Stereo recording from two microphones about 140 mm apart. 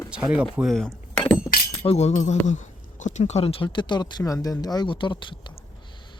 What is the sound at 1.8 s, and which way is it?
Speech, 50° left (ahead or behind).